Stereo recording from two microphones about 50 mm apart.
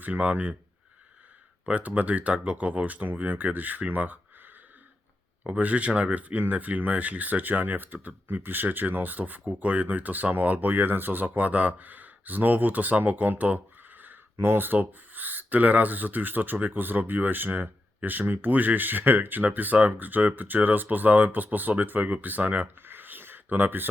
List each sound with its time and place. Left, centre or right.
0.0 s speech: right
1.6 s speech: right
5.5 s speech: right
14.3 s speech: right